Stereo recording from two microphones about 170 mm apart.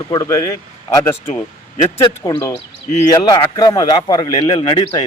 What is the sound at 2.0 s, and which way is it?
A man's voice, 25° left (ahead or behind).